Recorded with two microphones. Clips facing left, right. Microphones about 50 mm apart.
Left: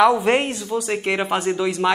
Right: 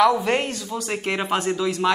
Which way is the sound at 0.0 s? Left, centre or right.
Left.